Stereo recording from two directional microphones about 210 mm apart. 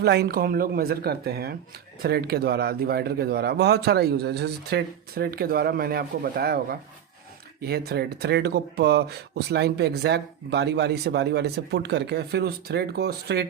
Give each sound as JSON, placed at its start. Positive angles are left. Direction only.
{"t": 0.0, "sound": "speech", "side_deg": -50}